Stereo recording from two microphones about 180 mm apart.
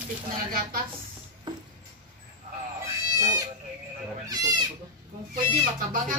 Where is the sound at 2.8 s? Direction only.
20° right (ahead or behind).